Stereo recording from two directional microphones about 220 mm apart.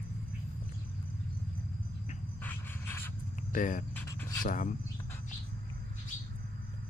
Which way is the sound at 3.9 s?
10° left (ahead or behind).